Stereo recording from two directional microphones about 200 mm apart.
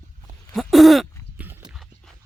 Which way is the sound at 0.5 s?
Centre (ahead or behind).